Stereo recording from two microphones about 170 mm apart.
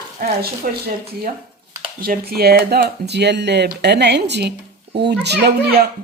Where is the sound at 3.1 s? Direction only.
85° right.